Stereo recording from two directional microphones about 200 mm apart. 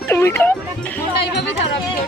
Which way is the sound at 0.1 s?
10° left (ahead or behind).